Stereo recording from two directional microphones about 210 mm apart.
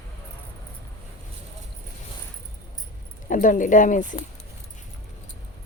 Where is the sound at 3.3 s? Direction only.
40° left (ahead or behind).